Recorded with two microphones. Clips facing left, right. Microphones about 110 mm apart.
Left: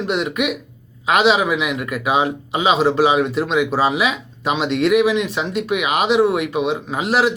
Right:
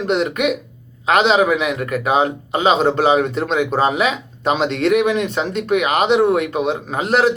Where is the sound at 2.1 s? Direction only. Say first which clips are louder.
Right 1 dB; 5° left (ahead or behind).